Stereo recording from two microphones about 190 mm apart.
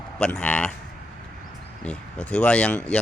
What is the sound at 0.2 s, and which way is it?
Speech, 5° left (ahead or behind).